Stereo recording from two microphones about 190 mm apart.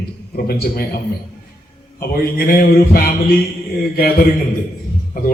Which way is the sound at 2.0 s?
55° left (ahead or behind).